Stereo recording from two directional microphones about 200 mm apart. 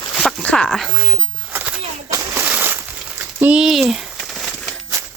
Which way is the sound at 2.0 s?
15° right (ahead or behind).